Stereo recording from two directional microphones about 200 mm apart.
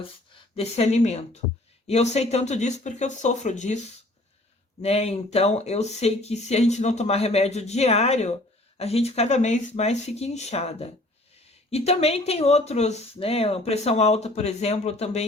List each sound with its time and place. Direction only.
0.5 s speech: 30° left (ahead or behind)
4.8 s speech: 30° left (ahead or behind)